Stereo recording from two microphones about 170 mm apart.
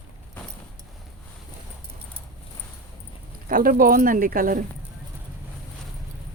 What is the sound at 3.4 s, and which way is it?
Speech, 55° right (ahead or behind).